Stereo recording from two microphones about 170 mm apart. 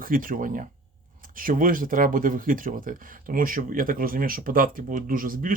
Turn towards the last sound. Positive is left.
turn(degrees=-55)  # may be behind; listen again after turning